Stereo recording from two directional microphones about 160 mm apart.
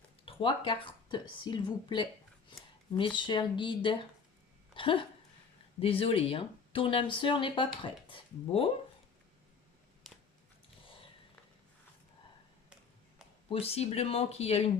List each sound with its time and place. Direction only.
0.3 s speech: 35° left (ahead or behind)
10.0 s a sound: 5° right (ahead or behind)
13.5 s speech: 40° left (ahead or behind)